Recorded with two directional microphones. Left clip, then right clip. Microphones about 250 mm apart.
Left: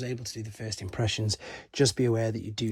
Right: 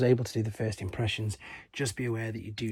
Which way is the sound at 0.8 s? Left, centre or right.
Centre.